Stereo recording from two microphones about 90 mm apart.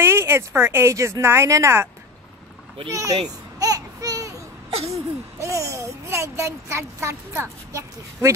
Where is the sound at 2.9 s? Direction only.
35° right (ahead or behind).